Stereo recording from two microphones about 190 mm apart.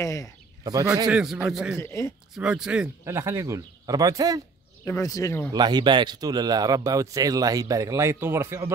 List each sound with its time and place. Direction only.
0.0 s speech: 15° left (ahead or behind)
0.7 s a man's voice: 20° right (ahead or behind)
1.0 s a man's voice: centre (ahead or behind)
1.8 s speech: 15° left (ahead or behind)
2.3 s speech: 5° right (ahead or behind)
4.8 s speech: 15° left (ahead or behind)
5.5 s a man's voice: 20° right (ahead or behind)